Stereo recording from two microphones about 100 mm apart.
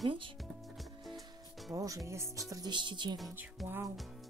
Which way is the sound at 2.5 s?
45° right (ahead or behind).